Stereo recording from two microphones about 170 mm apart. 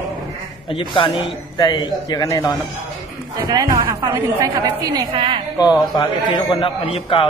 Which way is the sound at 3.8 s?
20° right (ahead or behind).